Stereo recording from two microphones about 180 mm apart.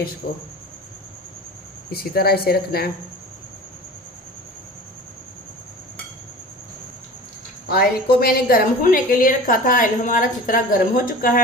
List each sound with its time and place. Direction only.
0.2 s a woman's voice: 45° left (ahead or behind)
1.9 s speech: 60° left (ahead or behind)
7.7 s a woman's voice: 55° left (ahead or behind)